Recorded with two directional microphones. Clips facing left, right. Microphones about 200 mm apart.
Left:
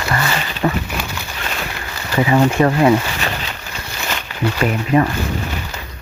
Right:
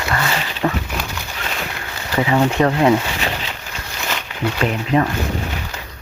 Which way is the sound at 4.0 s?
Centre (ahead or behind).